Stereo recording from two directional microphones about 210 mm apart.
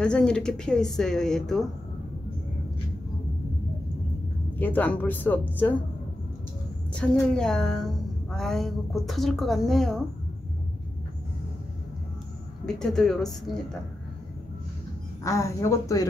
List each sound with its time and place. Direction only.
0.0 s a woman's voice: 5° left (ahead or behind)
4.6 s speech: 10° left (ahead or behind)
6.9 s a woman's voice: 5° left (ahead or behind)
12.6 s a woman's voice: 5° left (ahead or behind)
15.2 s speech: 15° left (ahead or behind)